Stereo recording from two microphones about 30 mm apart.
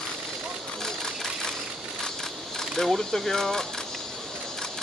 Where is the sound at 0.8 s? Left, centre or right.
Centre.